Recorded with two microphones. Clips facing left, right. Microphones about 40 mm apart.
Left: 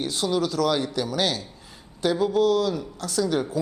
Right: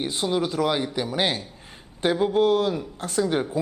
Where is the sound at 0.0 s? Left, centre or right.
Right.